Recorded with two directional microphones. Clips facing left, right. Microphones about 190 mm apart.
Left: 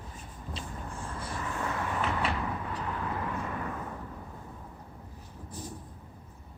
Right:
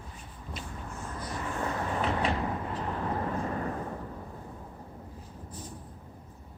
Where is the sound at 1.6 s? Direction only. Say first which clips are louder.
Right 2 dB; 35° right (ahead or behind).